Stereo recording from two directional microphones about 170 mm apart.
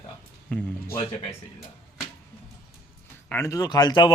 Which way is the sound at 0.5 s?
10° left (ahead or behind).